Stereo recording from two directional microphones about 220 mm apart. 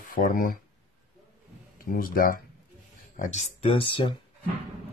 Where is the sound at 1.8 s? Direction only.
40° left (ahead or behind); by 4.1 s 25° left (ahead or behind).